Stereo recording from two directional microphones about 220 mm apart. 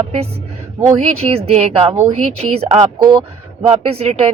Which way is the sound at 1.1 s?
25° right (ahead or behind).